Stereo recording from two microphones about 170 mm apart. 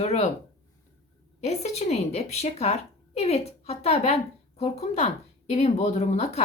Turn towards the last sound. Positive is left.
turn(degrees=40)  # may be behind; listen again after turning